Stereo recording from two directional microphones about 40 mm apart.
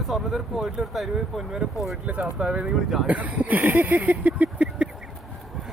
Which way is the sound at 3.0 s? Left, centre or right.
Right.